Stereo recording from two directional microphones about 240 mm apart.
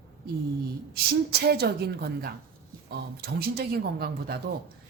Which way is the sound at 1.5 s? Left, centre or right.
Right.